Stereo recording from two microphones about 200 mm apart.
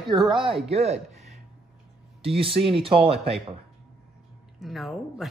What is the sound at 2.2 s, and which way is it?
Speech, 30° right (ahead or behind).